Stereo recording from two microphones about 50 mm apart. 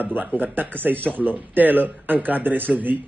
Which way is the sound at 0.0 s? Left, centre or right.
Right.